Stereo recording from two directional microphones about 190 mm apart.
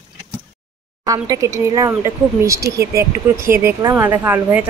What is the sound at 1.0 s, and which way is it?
Speech, 20° right (ahead or behind).